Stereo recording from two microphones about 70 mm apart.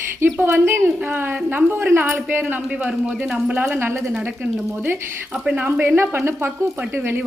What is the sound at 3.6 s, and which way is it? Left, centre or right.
Speech, right.